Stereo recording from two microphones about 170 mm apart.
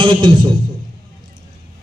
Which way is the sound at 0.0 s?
30° right (ahead or behind).